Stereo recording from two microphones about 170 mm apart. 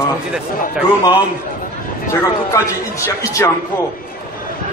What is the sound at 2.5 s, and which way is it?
A man's voice, 20° left (ahead or behind).